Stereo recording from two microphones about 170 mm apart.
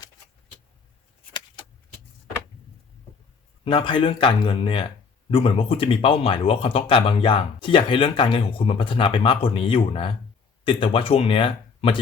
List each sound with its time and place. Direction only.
3.6 s speech: 30° left (ahead or behind)